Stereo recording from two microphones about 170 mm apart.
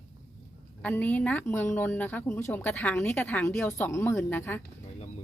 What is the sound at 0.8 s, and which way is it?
Speech, 10° left (ahead or behind).